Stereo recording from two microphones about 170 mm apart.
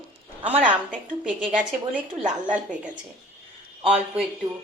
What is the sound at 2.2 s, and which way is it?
Speech, 50° right (ahead or behind).